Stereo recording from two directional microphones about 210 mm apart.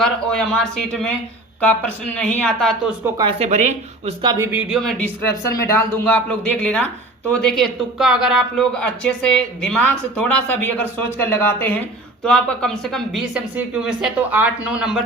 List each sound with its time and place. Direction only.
0.0 s speech: centre (ahead or behind)
2.1 s speech: 5° left (ahead or behind)
3.2 s speech: 25° right (ahead or behind)
4.3 s speech: 15° right (ahead or behind)
4.7 s a woman's voice: centre (ahead or behind)